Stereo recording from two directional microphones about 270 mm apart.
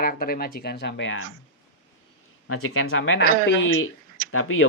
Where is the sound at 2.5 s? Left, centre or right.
Left.